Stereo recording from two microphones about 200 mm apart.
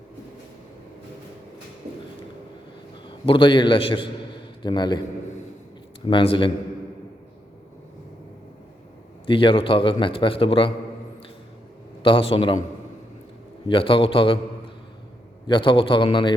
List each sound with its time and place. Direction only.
3.2 s a man's voice: 25° left (ahead or behind)
6.1 s a man's voice: 25° left (ahead or behind)
9.2 s a man's voice: 25° left (ahead or behind)
12.0 s a man's voice: 25° left (ahead or behind)
13.7 s a man's voice: 25° left (ahead or behind)
15.4 s a man's voice: 25° left (ahead or behind)